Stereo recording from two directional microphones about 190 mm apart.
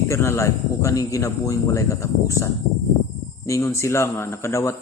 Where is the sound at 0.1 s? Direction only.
15° left (ahead or behind).